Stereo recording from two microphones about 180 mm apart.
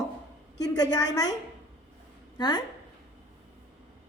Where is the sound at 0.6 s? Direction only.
20° left (ahead or behind).